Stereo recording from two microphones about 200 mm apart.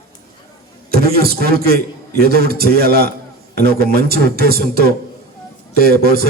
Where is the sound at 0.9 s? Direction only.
50° right (ahead or behind).